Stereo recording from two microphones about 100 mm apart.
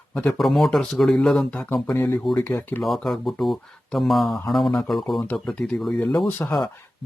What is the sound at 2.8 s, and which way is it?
Speech, centre (ahead or behind).